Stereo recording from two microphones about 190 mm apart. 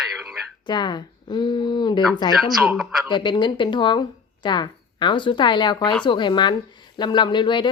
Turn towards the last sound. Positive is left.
turn(degrees=25)  # may be behind; listen again after turning